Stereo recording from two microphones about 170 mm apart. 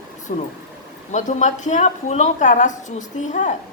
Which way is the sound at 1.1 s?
45° left (ahead or behind).